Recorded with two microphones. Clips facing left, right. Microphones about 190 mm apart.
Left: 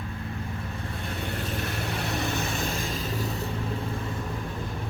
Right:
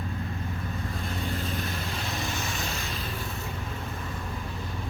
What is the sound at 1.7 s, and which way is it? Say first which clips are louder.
Vehicle: left 3 dB; 65° left (ahead or behind).